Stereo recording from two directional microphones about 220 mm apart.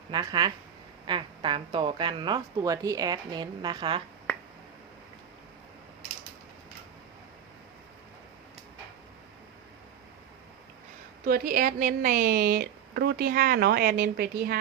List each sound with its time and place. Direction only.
0.1 s speech: 20° right (ahead or behind)
11.3 s a woman's voice: 40° right (ahead or behind)